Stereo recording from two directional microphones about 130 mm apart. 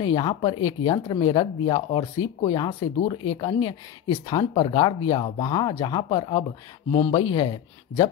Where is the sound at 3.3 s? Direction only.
40° left (ahead or behind).